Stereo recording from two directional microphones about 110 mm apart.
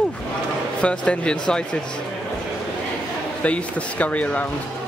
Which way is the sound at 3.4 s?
10° left (ahead or behind).